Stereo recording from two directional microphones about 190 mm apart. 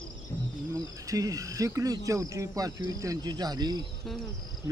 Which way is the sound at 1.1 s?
20° right (ahead or behind).